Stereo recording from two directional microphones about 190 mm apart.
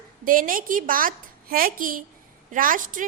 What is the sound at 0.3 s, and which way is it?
A woman's voice, 45° right (ahead or behind).